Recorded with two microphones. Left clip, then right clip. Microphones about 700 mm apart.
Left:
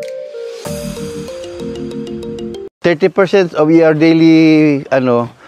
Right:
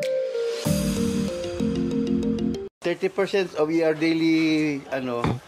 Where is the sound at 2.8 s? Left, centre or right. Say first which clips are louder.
Left 13 dB; left.